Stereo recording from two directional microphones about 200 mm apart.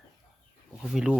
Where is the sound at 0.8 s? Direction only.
Centre (ahead or behind).